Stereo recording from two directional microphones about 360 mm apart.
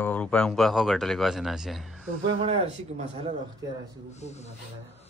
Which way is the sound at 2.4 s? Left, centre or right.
Centre.